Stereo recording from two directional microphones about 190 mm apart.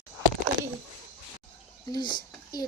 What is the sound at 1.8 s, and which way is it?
Speech, 20° left (ahead or behind).